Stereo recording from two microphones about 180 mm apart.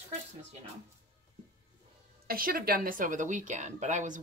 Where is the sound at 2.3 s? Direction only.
55° right (ahead or behind).